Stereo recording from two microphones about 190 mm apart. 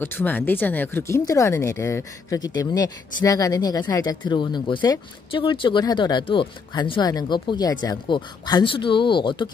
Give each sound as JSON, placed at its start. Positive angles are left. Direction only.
{"t": 0.0, "sound": "speech", "side_deg": 10}